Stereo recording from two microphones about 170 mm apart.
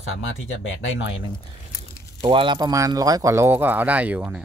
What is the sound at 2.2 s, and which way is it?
Speech, 30° right (ahead or behind).